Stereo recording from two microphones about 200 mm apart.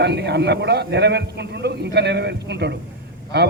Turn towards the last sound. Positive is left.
turn(degrees=-55)  # may be behind; listen again after turning